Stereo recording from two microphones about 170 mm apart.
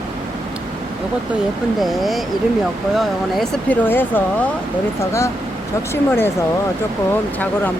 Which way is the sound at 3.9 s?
10° left (ahead or behind).